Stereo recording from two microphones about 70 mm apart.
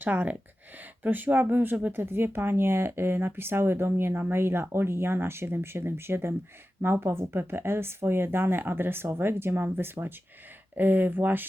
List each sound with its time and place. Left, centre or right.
0.0 s speech: right